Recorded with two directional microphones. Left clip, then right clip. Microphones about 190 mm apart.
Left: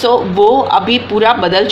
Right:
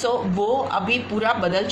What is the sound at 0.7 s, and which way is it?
Speech, 50° left (ahead or behind).